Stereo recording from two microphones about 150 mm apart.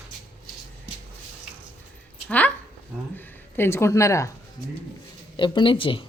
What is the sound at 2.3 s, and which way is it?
Speech, 10° left (ahead or behind).